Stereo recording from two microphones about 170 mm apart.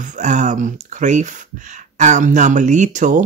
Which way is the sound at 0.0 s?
45° right (ahead or behind).